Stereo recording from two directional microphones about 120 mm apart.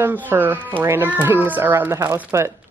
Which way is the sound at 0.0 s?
15° right (ahead or behind).